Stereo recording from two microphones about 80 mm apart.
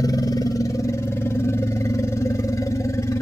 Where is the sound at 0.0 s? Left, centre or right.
Left.